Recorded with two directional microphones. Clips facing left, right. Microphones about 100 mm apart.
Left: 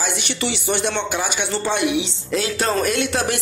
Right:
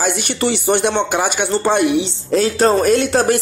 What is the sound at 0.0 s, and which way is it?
Speech, 45° right (ahead or behind).